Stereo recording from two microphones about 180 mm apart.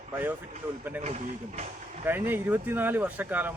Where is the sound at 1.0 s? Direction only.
40° right (ahead or behind).